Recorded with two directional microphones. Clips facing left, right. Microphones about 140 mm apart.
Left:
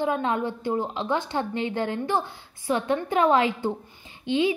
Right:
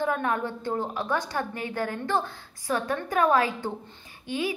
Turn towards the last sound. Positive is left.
turn(degrees=20)  # may be behind; listen again after turning